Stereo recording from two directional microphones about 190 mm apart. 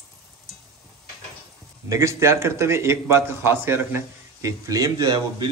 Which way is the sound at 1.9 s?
15° right (ahead or behind).